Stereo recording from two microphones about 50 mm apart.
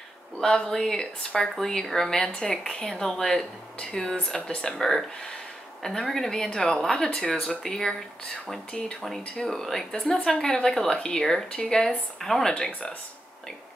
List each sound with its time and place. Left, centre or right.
0.4 s speech: centre
4.4 s speech: left
4.8 s speech: centre
9.0 s speech: centre